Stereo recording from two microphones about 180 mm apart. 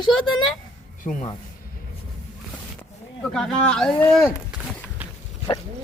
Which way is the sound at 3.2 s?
5° left (ahead or behind).